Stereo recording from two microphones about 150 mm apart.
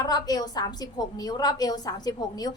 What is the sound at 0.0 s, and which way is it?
A woman's voice, 25° left (ahead or behind).